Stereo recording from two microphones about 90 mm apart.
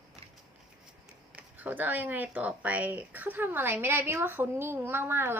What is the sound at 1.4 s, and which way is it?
Speech, 20° right (ahead or behind).